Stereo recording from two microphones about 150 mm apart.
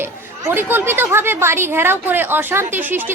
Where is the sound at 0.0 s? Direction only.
15° right (ahead or behind).